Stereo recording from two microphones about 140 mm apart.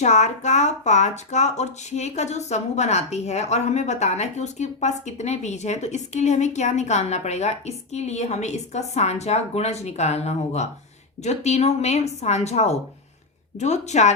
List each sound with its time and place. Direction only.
0.0 s a woman's voice: 55° left (ahead or behind)